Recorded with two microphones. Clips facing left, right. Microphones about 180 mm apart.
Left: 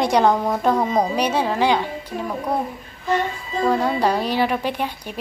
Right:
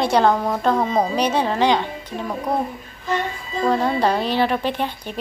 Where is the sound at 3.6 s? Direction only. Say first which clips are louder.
Right 1 dB; 10° left (ahead or behind).